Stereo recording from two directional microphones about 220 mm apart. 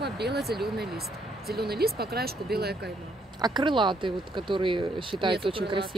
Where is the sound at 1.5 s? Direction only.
45° right (ahead or behind).